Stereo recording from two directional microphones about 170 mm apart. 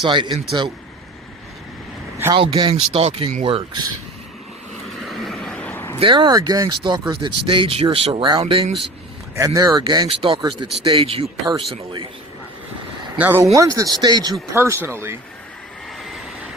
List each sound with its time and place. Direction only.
0.0 s speech: 25° right (ahead or behind)
2.3 s speech: 30° right (ahead or behind)
4.9 s a sound: centre (ahead or behind)
6.0 s speech: 30° right (ahead or behind)
9.3 s speech: 20° right (ahead or behind)
13.1 s speech: 10° right (ahead or behind)